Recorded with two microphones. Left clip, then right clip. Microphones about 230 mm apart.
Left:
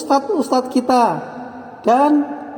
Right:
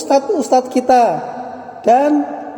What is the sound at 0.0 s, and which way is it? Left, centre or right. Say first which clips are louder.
A man's voice: right 2 dB; left.